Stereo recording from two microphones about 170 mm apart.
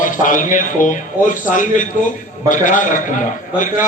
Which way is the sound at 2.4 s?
50° left (ahead or behind).